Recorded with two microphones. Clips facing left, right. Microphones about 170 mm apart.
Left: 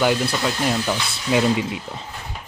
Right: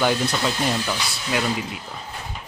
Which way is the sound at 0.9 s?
25° left (ahead or behind).